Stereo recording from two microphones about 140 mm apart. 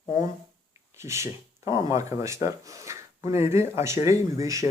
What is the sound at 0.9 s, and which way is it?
Speech, 20° right (ahead or behind).